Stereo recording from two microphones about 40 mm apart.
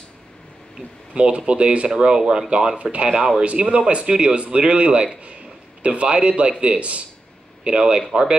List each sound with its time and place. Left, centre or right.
1.1 s speech: right
1.9 s a man's voice: centre